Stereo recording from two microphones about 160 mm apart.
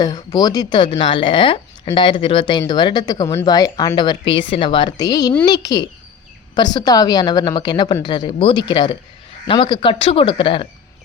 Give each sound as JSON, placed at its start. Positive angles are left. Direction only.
{"t": 0.0, "sound": "speech", "side_deg": 25}